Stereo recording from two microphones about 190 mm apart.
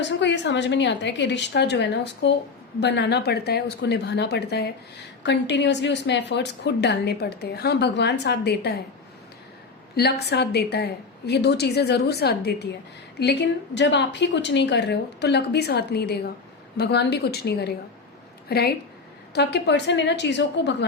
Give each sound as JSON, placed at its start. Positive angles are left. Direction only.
{"t": 0.0, "sound": "a woman's voice", "side_deg": 70}
{"t": 9.9, "sound": "a woman's voice", "side_deg": 60}